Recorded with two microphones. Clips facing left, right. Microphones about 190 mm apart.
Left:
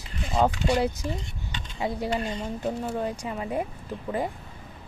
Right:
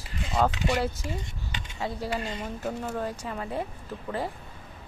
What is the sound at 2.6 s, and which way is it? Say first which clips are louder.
Speech: left 2 dB; 15° left (ahead or behind).